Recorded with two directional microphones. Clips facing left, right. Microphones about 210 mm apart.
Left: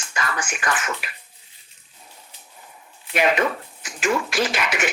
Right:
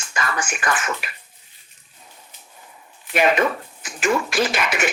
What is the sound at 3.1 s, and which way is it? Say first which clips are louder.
Speech: right 2 dB; 45° right (ahead or behind).